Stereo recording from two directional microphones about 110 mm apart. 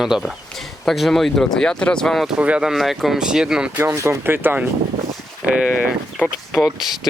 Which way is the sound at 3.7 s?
20° right (ahead or behind).